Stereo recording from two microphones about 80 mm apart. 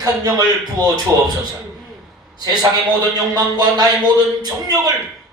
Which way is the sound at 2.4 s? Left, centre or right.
Right.